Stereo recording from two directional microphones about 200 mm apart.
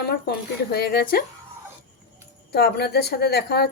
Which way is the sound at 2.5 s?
55° left (ahead or behind).